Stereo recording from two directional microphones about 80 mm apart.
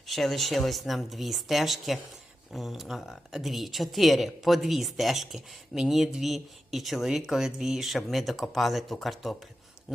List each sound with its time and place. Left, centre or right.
0.1 s speech: centre